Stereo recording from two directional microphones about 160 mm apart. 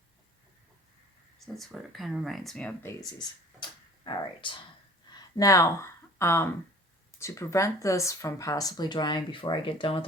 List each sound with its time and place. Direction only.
1.5 s speech: centre (ahead or behind)
3.0 s a sound: 25° left (ahead or behind)
5.4 s speech: 20° left (ahead or behind)